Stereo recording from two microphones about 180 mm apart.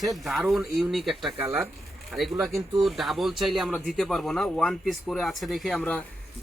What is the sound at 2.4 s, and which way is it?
Speech, centre (ahead or behind).